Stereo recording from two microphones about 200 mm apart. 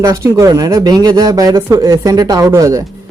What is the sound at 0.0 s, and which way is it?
Speech, 15° right (ahead or behind).